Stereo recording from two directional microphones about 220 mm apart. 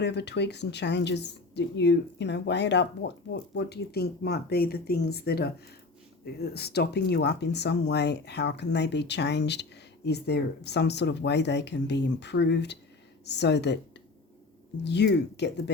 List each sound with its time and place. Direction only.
0.0 s speech: 50° left (ahead or behind)
14.8 s speech: 50° left (ahead or behind)